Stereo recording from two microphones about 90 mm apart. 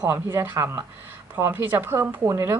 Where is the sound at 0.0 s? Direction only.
30° right (ahead or behind).